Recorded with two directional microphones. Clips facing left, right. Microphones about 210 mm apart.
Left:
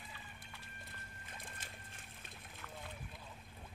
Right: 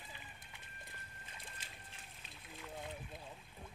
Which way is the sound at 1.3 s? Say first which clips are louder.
Left 4 dB; 50° left (ahead or behind).